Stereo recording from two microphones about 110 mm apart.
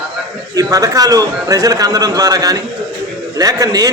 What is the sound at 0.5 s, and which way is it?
A man's voice, 35° right (ahead or behind).